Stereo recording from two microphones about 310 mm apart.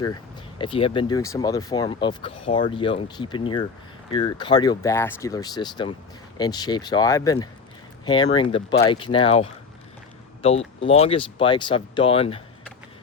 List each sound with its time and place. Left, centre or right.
0.6 s speech: centre